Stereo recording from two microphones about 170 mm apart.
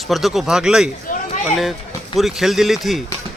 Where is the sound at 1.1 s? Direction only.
50° left (ahead or behind).